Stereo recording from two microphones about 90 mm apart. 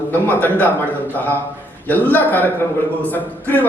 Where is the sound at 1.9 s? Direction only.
20° left (ahead or behind).